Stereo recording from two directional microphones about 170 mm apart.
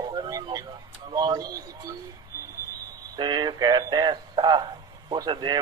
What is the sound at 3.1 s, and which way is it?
Speech, 25° right (ahead or behind).